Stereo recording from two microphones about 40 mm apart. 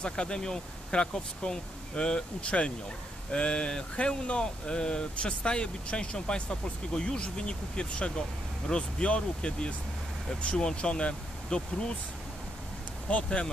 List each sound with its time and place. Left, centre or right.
0.0 s speech: left
13.1 s speech: left